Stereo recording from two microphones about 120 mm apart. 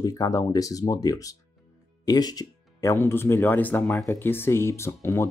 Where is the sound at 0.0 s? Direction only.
30° left (ahead or behind).